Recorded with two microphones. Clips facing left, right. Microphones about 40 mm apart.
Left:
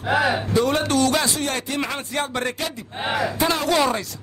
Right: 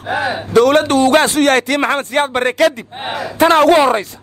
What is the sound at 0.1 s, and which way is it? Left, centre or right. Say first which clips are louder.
Speech: right 1 dB; right.